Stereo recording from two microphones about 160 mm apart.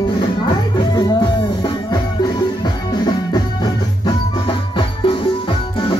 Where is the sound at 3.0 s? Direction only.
25° left (ahead or behind).